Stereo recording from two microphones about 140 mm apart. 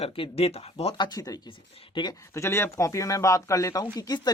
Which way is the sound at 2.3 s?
20° left (ahead or behind).